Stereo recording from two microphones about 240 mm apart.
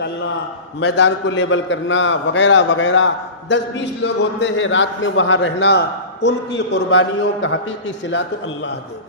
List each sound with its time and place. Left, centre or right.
0.8 s a man's voice: left